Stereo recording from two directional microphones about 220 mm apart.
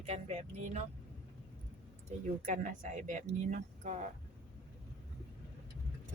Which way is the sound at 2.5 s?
35° right (ahead or behind).